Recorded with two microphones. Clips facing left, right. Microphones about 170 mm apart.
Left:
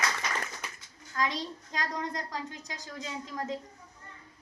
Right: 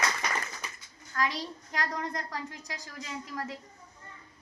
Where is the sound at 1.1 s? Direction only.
20° left (ahead or behind).